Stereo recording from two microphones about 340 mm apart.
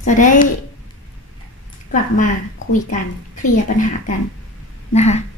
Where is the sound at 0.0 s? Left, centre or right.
Left.